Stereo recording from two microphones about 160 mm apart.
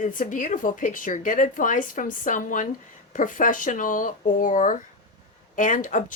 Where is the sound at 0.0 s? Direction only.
55° left (ahead or behind).